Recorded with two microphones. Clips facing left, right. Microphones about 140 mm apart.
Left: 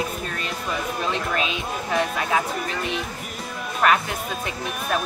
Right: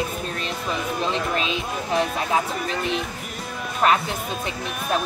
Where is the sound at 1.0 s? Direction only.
30° right (ahead or behind).